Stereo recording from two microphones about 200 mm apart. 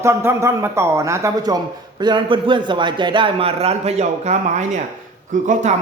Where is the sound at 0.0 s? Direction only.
15° right (ahead or behind).